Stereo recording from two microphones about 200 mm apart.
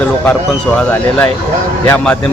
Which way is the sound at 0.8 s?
5° left (ahead or behind).